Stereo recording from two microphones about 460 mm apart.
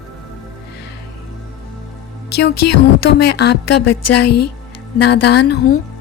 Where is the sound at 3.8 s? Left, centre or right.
Left.